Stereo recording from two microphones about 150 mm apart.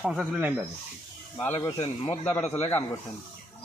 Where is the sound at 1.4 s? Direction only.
15° left (ahead or behind).